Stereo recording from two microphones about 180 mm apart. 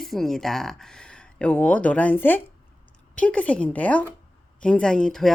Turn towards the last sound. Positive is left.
turn(degrees=5)  # may be behind; listen again after turning